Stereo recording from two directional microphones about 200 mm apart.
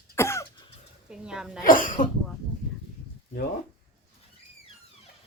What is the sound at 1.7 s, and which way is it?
Speech, 45° left (ahead or behind).